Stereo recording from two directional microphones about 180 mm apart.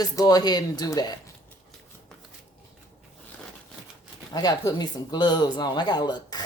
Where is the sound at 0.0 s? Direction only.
20° left (ahead or behind).